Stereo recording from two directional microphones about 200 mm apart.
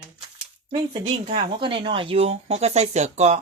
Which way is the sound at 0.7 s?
25° right (ahead or behind).